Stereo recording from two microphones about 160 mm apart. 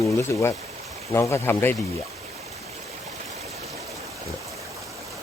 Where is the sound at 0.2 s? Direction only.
15° left (ahead or behind).